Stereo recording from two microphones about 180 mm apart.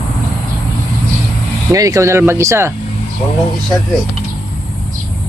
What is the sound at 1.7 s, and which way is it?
Speech, 20° right (ahead or behind).